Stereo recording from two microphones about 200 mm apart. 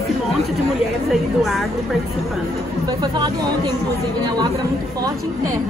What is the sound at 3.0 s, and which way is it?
Speech, 20° right (ahead or behind).